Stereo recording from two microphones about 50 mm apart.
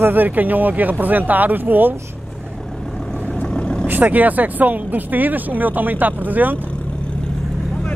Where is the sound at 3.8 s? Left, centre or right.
Right.